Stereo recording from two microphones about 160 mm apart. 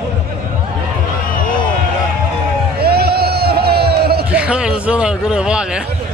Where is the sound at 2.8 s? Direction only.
80° right.